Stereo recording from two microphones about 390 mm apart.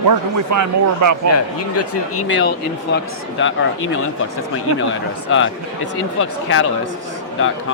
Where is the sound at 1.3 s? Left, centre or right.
Left.